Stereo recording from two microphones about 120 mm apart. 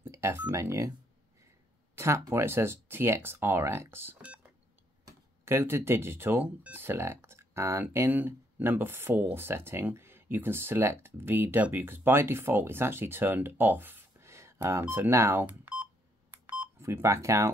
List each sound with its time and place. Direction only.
0.0 s a sound: 20° right (ahead or behind)
0.5 s speech: 25° right (ahead or behind)
2.0 s speech: 25° right (ahead or behind)
16.8 s speech: 25° right (ahead or behind)